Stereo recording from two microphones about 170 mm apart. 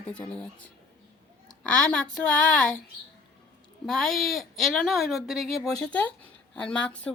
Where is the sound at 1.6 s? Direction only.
5° left (ahead or behind).